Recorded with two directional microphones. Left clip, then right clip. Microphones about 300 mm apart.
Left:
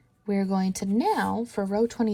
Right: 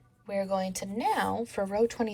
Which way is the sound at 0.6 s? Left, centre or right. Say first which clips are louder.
Left 4 dB; centre.